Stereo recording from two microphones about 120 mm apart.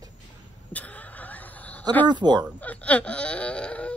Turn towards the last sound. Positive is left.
turn(degrees=10)  # may be behind; listen again after turning